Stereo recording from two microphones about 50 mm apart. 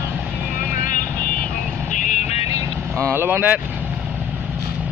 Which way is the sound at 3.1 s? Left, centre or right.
Right.